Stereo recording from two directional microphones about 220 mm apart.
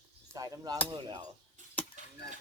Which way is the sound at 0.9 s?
20° right (ahead or behind).